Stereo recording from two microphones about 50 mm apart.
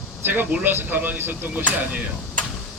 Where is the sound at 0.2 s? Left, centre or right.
Right.